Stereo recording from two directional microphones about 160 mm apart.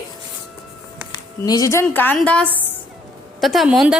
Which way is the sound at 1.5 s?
20° left (ahead or behind).